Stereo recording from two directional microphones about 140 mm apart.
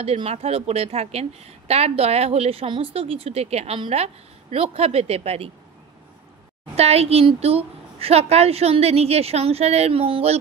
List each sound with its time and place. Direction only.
0.0 s a woman's voice: 45° right (ahead or behind)
6.7 s a woman's voice: 45° right (ahead or behind)